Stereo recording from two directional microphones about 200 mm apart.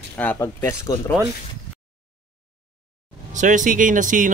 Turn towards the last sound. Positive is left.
turn(degrees=-40)  # may be behind; listen again after turning